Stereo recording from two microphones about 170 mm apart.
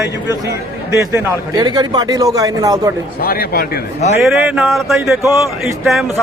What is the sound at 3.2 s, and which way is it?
Speech, 65° left (ahead or behind).